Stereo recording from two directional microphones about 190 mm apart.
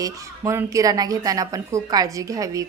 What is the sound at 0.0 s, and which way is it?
A woman's voice, 15° right (ahead or behind).